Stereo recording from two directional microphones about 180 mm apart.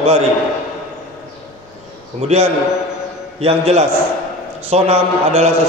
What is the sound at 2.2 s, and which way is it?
A man's voice, 35° right (ahead or behind).